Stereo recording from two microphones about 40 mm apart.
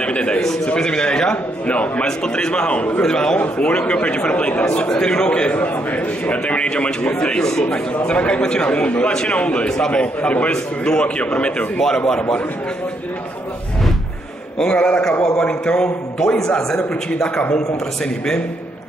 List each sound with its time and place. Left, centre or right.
0.0 s a man's voice: left
1.7 s a man's voice: left
2.0 s a man's voice: centre
3.0 s a man's voice: centre
3.3 s a man's voice: left
5.6 s a man's voice: left
7.4 s a man's voice: centre
7.9 s a man's voice: left
9.7 s a man's voice: centre
10.5 s a man's voice: left
12.1 s a man's voice: centre
14.6 s a man's voice: left